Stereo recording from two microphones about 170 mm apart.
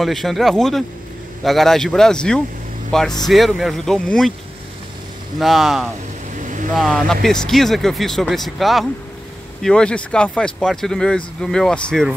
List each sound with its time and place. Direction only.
0.0 s speech: centre (ahead or behind)
5.4 s speech: centre (ahead or behind)
6.3 s vehicle: 50° right (ahead or behind)
6.7 s speech: 5° left (ahead or behind)